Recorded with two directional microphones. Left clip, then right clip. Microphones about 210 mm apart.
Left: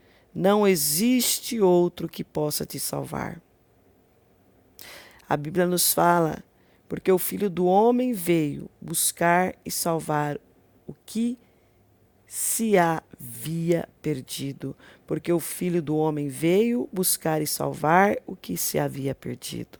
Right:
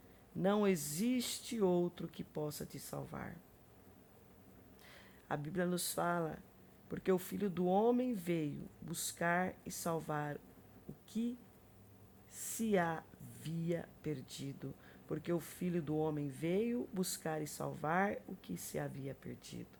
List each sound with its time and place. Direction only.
0.4 s speech: 40° left (ahead or behind)
4.8 s speech: 40° left (ahead or behind)